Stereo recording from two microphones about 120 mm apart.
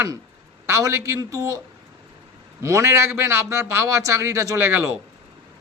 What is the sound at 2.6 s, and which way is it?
Speech, 25° right (ahead or behind).